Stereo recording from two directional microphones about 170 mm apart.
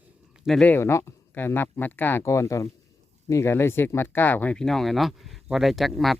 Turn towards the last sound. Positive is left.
turn(degrees=0)  # may be behind; listen again after turning